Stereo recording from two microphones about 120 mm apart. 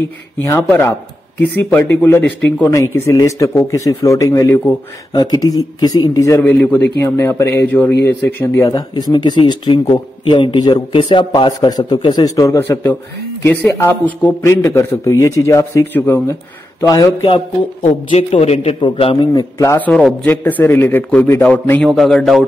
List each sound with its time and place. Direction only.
0.5 s a man's voice: 15° left (ahead or behind)
3.2 s a man's voice: 25° left (ahead or behind)
8.6 s a man's voice: 35° left (ahead or behind)
17.8 s a man's voice: 60° left (ahead or behind)
18.8 s a man's voice: 45° left (ahead or behind)
19.3 s a man's voice: 25° left (ahead or behind)
21.8 s a man's voice: 5° left (ahead or behind)